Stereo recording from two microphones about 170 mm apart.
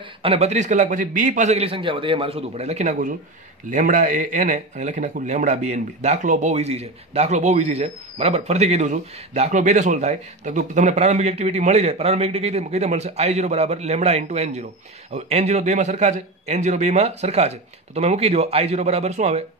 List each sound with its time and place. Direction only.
0.2 s speech: 35° right (ahead or behind)